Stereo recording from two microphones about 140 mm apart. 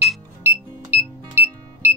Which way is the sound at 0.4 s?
15° right (ahead or behind).